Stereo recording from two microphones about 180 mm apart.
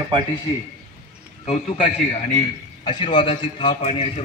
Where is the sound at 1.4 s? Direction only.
45° left (ahead or behind).